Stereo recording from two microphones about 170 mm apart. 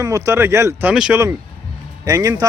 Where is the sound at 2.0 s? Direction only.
20° right (ahead or behind).